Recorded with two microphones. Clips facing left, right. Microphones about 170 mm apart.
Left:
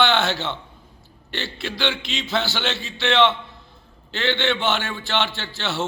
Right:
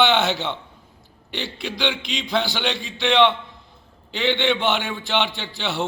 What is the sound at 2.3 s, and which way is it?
A man's voice, 15° right (ahead or behind).